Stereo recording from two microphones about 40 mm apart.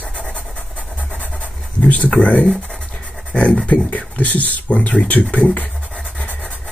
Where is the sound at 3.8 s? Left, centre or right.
Left.